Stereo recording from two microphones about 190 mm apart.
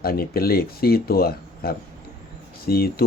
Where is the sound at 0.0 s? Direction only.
55° left (ahead or behind).